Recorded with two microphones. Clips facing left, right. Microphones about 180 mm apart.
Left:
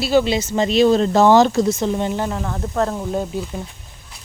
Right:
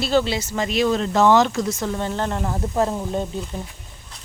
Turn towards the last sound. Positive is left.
turn(degrees=5)  # may be behind; listen again after turning